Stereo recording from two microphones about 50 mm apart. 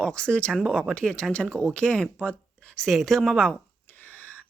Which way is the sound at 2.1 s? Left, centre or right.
Left.